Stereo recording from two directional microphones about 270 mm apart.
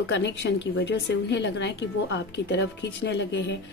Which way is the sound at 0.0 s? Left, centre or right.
Left.